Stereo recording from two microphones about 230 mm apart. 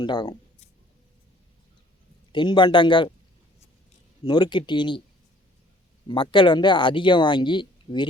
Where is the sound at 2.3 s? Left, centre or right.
Centre.